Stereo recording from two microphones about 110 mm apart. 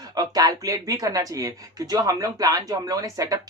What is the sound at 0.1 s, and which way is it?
Speech, 35° right (ahead or behind).